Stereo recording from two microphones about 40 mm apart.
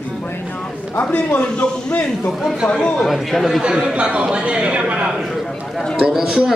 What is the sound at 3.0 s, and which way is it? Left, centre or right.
Speech, centre.